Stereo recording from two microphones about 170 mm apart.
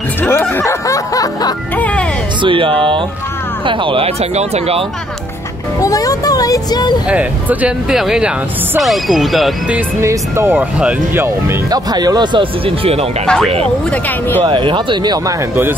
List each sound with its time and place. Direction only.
0.2 s music: 10° left (ahead or behind)
1.8 s music: 10° left (ahead or behind)
2.4 s speech: 30° right (ahead or behind)
5.8 s speech: 20° left (ahead or behind)
7.1 s speech: 10° right (ahead or behind); by 13.3 s 35° right (ahead or behind)
13.8 s speech: 10° left (ahead or behind)
14.4 s speech: 30° right (ahead or behind)